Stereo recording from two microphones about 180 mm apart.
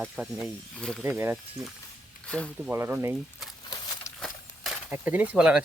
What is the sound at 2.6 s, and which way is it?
Speech, 10° right (ahead or behind).